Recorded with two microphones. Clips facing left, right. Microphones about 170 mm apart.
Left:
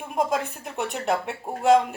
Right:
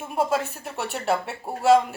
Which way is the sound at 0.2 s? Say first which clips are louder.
Right 1 dB; 15° left (ahead or behind).